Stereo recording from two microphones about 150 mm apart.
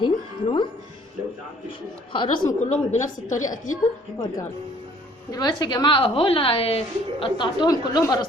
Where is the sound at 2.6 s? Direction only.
55° left (ahead or behind).